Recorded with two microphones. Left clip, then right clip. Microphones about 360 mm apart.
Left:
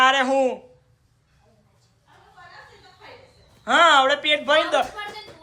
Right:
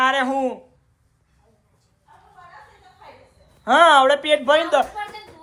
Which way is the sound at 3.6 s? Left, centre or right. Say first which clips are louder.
Right 3 dB; centre.